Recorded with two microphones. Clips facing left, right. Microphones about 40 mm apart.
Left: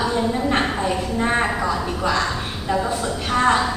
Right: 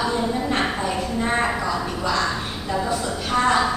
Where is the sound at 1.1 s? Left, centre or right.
Centre.